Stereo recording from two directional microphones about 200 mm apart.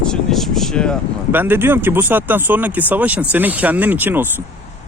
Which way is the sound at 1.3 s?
10° right (ahead or behind).